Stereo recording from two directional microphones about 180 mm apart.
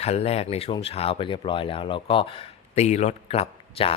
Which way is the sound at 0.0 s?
35° left (ahead or behind).